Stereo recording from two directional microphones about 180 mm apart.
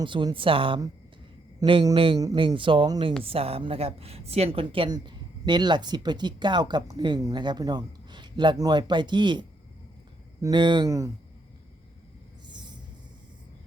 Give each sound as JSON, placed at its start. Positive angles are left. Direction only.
{"t": 0.0, "sound": "a woman's voice", "side_deg": -25}